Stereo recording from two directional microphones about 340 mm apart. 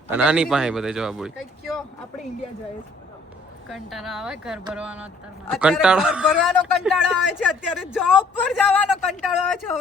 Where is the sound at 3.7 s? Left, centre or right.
Centre.